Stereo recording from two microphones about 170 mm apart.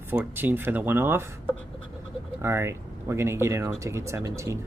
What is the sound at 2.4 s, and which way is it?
Speech, 15° right (ahead or behind).